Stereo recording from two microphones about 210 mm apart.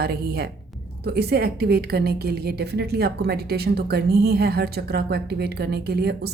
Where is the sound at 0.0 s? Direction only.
50° right (ahead or behind).